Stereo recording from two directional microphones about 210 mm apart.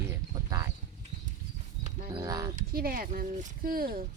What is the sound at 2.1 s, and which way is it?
Speech, 20° right (ahead or behind).